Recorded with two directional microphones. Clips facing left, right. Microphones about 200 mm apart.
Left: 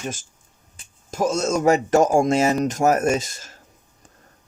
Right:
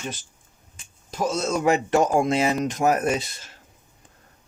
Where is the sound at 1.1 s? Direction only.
45° left (ahead or behind).